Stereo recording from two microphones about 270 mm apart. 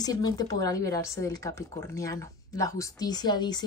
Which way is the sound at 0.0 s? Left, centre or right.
Centre.